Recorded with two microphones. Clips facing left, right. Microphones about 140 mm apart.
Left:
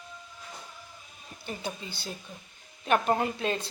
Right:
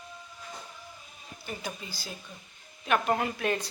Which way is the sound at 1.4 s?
30° left (ahead or behind).